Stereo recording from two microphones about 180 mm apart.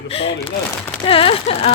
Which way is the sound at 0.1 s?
35° left (ahead or behind).